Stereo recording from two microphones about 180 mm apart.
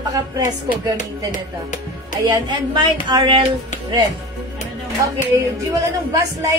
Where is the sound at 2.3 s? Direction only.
25° right (ahead or behind).